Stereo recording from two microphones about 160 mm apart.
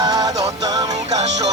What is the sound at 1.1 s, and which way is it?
Music, 45° right (ahead or behind).